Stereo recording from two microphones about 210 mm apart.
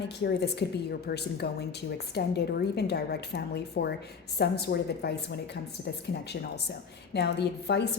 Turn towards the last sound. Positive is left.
turn(degrees=55)  # may be behind; listen again after turning